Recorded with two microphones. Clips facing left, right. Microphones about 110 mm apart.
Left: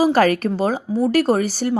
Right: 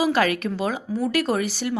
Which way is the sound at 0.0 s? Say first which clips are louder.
Left 5 dB; 40° left (ahead or behind).